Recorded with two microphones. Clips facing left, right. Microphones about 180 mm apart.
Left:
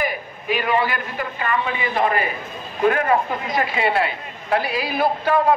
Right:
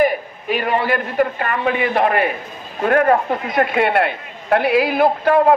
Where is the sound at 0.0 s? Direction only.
50° right (ahead or behind).